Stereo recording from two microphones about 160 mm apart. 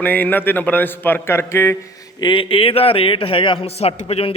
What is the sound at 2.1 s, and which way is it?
A man's voice, 30° left (ahead or behind).